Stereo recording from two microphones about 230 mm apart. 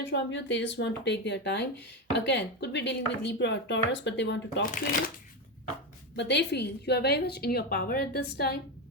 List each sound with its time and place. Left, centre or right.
0.1 s speech: left
6.1 s speech: left